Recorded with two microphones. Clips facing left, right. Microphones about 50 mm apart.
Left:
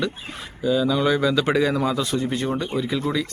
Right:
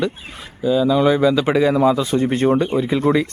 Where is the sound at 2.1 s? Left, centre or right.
Right.